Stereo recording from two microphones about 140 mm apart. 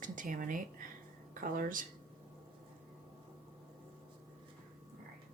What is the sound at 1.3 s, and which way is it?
Speech, 85° right.